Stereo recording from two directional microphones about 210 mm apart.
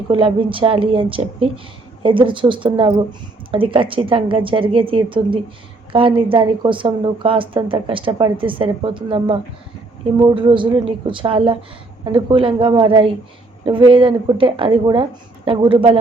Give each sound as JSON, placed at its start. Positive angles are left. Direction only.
{"t": 0.1, "sound": "a woman's voice", "side_deg": -25}